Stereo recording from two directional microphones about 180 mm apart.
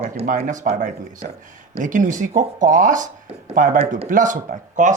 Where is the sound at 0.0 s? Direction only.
40° right (ahead or behind).